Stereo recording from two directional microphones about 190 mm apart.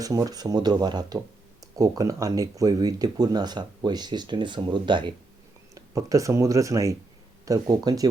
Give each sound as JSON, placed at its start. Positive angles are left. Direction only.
{"t": 0.0, "sound": "speech", "side_deg": -20}